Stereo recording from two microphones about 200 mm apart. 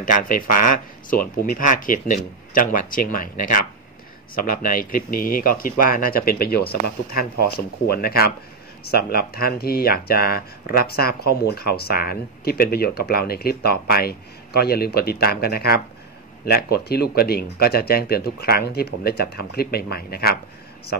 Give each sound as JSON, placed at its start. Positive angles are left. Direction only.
{"t": 0.0, "sound": "speech", "side_deg": 45}